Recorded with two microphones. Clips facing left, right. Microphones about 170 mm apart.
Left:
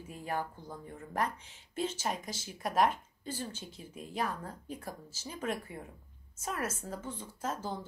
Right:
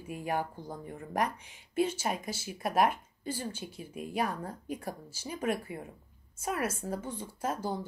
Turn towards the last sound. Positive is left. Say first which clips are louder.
# right 3 dB
turn(degrees=-10)  # may be behind; listen again after turning